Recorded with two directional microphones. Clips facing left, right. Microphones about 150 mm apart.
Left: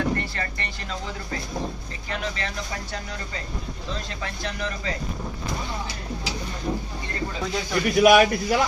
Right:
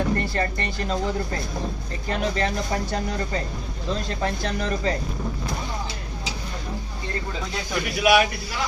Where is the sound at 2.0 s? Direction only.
40° right (ahead or behind).